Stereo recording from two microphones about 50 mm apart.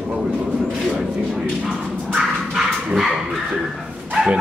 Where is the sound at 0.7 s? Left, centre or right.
Centre.